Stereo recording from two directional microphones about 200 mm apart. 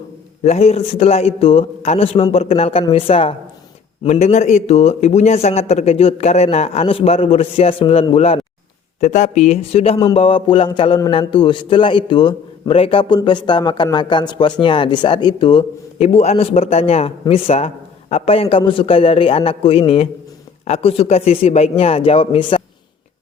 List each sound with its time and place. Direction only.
0.4 s a man's voice: 30° left (ahead or behind)